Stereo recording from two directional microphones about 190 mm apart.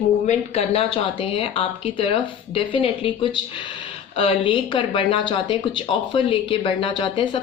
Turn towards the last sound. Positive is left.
turn(degrees=25)  # may be behind; listen again after turning